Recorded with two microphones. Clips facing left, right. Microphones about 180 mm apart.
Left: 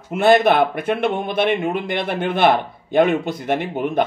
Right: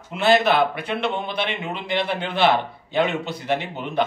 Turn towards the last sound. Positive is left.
turn(degrees=50)  # may be behind; listen again after turning